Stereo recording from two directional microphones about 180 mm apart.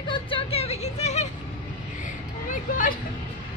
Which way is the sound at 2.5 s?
50° left (ahead or behind).